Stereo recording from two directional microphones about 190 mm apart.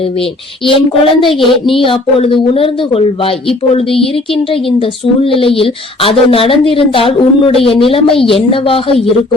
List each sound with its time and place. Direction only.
0.2 s a woman's voice: 25° left (ahead or behind)